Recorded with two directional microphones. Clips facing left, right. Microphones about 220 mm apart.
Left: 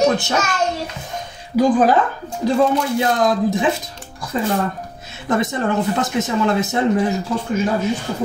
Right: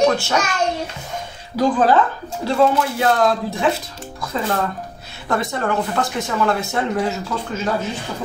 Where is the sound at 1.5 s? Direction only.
10° left (ahead or behind).